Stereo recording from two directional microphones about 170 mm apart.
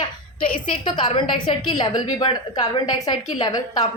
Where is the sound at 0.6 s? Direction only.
30° left (ahead or behind).